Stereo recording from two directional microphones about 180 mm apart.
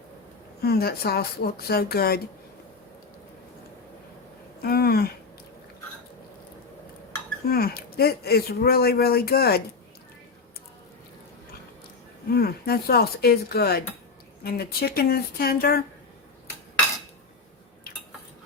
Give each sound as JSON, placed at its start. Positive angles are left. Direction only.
{"t": 0.6, "sound": "speech", "side_deg": 60}
{"t": 4.6, "sound": "speech", "side_deg": 60}
{"t": 7.4, "sound": "speech", "side_deg": 60}
{"t": 12.3, "sound": "speech", "side_deg": 60}